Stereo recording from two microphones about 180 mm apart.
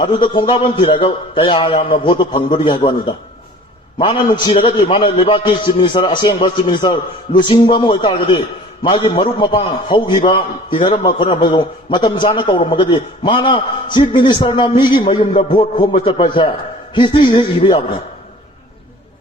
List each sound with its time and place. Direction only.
0.0 s a man's voice: 25° left (ahead or behind)
3.9 s a man's voice: 25° left (ahead or behind)